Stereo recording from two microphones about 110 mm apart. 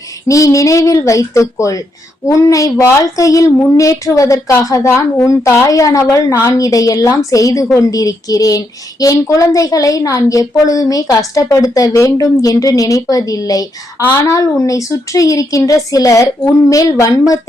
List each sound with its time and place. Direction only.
0.3 s a woman's voice: 30° left (ahead or behind)